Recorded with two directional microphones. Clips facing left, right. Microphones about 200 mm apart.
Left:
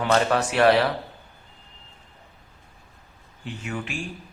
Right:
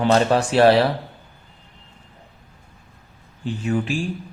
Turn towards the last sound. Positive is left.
turn(degrees=-35)  # may be behind; listen again after turning